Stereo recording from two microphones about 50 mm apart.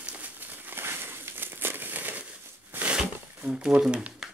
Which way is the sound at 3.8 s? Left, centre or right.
Right.